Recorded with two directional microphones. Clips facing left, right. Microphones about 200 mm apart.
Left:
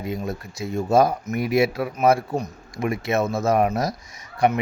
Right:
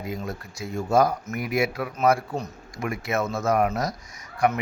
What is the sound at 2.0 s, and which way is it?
Speech, 15° left (ahead or behind).